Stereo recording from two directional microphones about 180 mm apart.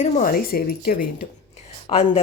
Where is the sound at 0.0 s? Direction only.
50° left (ahead or behind).